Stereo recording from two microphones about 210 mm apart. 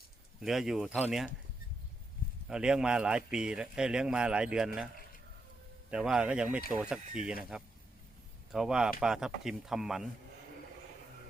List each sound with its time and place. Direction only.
0.4 s speech: centre (ahead or behind)
2.5 s speech: 5° right (ahead or behind)
5.9 s speech: 5° right (ahead or behind)
8.5 s speech: 5° right (ahead or behind)